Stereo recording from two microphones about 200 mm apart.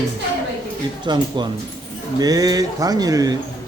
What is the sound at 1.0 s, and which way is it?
Speech, 20° right (ahead or behind).